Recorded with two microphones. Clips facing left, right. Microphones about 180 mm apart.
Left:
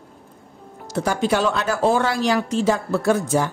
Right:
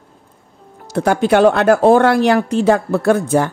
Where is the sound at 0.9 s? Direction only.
60° right (ahead or behind).